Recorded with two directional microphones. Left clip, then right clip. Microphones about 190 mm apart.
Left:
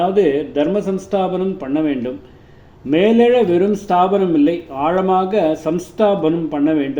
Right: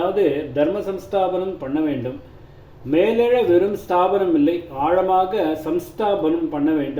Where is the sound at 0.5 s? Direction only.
40° left (ahead or behind).